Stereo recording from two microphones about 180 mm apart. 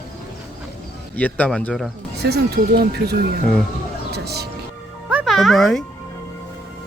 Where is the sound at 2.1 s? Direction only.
65° right (ahead or behind).